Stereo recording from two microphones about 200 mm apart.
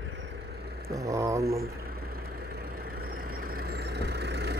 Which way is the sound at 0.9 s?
15° right (ahead or behind).